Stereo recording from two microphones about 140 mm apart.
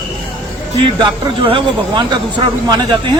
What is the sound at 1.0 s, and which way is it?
Speech, 35° right (ahead or behind).